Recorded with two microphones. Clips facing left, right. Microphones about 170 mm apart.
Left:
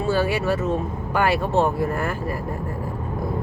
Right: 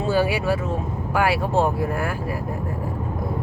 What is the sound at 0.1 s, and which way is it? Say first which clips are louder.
Speech: right 1 dB; 10° right (ahead or behind).